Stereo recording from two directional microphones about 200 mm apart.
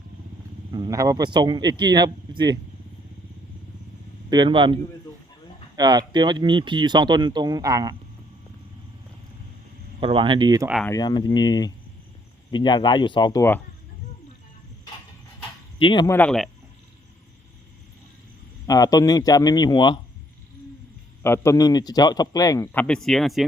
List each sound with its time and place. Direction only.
0.7 s speech: 20° right (ahead or behind)
4.3 s speech: 25° right (ahead or behind)
10.0 s speech: 25° right (ahead or behind)
10.8 s a man's voice: 20° left (ahead or behind)
15.8 s a man's voice: 20° left (ahead or behind)
16.1 s speech: 5° left (ahead or behind)
18.6 s a man's voice: 15° left (ahead or behind)
21.2 s a man's voice: 15° left (ahead or behind)